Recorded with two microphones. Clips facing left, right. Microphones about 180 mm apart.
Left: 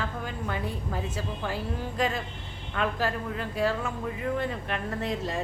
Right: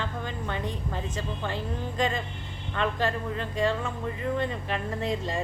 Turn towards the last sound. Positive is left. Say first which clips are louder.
# right 1 dB
turn(degrees=0)  # may be behind; listen again after turning